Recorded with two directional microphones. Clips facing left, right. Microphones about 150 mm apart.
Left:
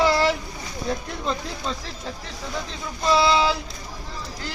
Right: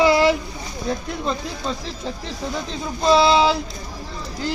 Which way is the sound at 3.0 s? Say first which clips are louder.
Right 4 dB; 25° right (ahead or behind).